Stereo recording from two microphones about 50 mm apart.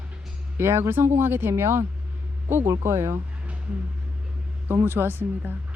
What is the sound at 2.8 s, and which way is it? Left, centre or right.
Speech, right.